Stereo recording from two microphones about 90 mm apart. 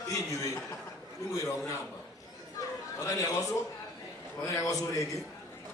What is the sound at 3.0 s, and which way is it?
A man's voice, 40° left (ahead or behind).